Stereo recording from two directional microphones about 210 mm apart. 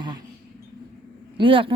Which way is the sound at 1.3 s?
25° right (ahead or behind).